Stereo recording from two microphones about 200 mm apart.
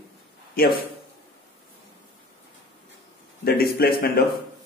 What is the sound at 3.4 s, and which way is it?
Speech, 50° left (ahead or behind).